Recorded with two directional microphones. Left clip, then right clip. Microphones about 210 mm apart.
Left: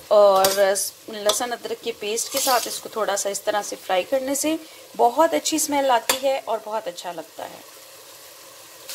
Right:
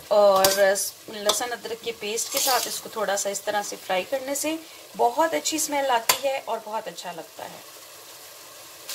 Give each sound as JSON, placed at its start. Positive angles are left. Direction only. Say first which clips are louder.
{"t": 0.1, "sound": "speech", "louder": "left 3 dB", "side_deg": 35}